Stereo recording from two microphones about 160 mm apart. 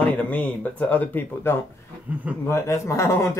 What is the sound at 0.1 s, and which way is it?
Speech, 10° left (ahead or behind).